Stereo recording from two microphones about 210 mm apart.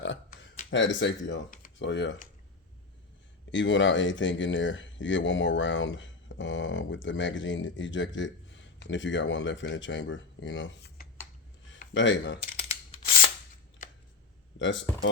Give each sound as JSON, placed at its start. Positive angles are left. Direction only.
{"t": 0.0, "sound": "a sound", "side_deg": 60}
{"t": 0.7, "sound": "speech", "side_deg": 60}
{"t": 1.5, "sound": "computer keyboard", "side_deg": 40}
{"t": 1.9, "sound": "speech", "side_deg": 60}
{"t": 3.5, "sound": "speech", "side_deg": 60}
{"t": 12.5, "sound": "scissors", "side_deg": 30}
{"t": 13.8, "sound": "a sound", "side_deg": 40}
{"t": 14.6, "sound": "speech", "side_deg": 60}